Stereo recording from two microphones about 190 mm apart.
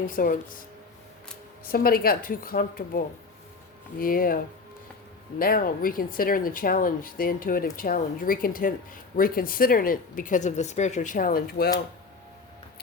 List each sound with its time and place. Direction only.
0.2 s speech: 45° left (ahead or behind)
1.6 s speech: 50° left (ahead or behind)
5.4 s speech: 50° left (ahead or behind)